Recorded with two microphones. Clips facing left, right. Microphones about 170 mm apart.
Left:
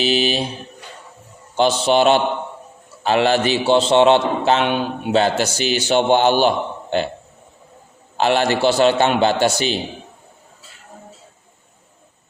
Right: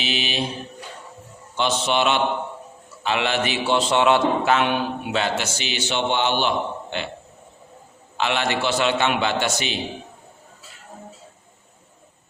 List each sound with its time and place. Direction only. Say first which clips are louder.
0.0 s speech: left 8 dB; 35° left (ahead or behind)
1.5 s a man's voice: left 6 dB; 35° left (ahead or behind)
5.4 s a man's voice: left 8 dB; 40° left (ahead or behind)
8.2 s a man's voice: left 7 dB; 40° left (ahead or behind)